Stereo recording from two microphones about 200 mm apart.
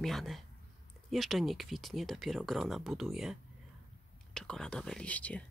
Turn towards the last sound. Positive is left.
turn(degrees=5)  # may be behind; listen again after turning